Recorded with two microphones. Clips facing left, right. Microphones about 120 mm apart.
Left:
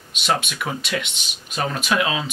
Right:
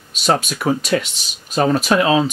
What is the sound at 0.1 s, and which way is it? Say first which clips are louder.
Speech: right 5 dB; 40° right (ahead or behind).